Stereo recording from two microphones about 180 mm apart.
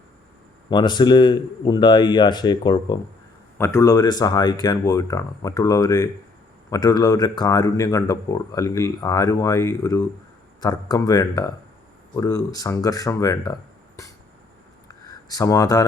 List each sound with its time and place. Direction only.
0.7 s speech: 25° left (ahead or behind)